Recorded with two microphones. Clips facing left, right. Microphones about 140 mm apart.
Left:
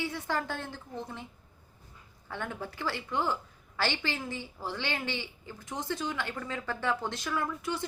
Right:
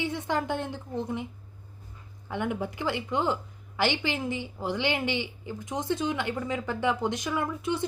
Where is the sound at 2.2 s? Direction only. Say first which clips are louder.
Right 7 dB; 15° right (ahead or behind).